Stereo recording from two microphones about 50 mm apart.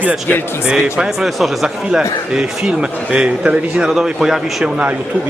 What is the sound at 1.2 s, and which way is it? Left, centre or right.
A man's voice, centre.